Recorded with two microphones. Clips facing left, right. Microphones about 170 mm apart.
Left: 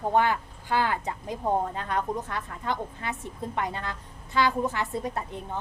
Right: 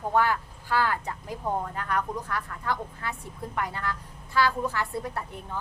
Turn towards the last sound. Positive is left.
turn(degrees=20)  # may be behind; listen again after turning